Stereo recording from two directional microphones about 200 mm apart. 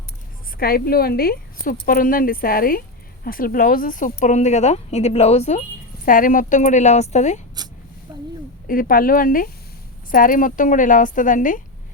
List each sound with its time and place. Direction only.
0.6 s a woman's voice: 50° left (ahead or behind)
8.6 s a woman's voice: 45° left (ahead or behind)